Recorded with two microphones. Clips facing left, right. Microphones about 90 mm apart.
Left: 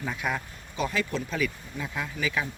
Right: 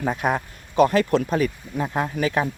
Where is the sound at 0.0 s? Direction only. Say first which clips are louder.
Right 8 dB; 45° right (ahead or behind).